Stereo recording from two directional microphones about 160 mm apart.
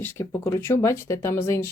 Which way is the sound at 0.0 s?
15° left (ahead or behind).